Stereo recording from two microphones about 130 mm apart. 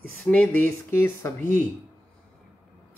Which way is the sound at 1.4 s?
85° right.